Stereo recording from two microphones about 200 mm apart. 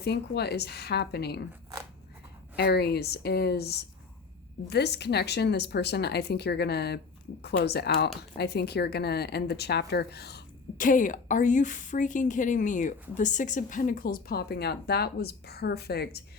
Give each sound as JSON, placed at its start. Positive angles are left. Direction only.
{"t": 0.0, "sound": "speech", "side_deg": 55}
{"t": 2.6, "sound": "speech", "side_deg": 55}